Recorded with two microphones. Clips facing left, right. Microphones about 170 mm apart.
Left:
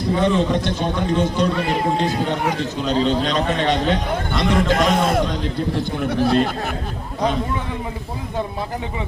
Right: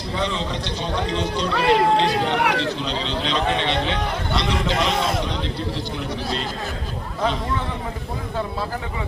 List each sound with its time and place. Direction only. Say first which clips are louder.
0.2 s a man's voice: left 6 dB; 50° left (ahead or behind)
1.5 s speech: right 2 dB; 75° right (ahead or behind)
2.0 s speech: even; 85° right
2.8 s a man's voice: left 7 dB; 45° left (ahead or behind)